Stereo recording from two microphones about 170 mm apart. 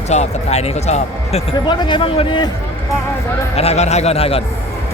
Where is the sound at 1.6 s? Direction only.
30° left (ahead or behind).